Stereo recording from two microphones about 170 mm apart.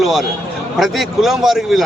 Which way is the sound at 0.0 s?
Centre (ahead or behind).